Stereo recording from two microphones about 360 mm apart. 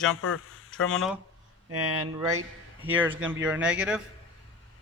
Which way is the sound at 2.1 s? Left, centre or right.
Centre.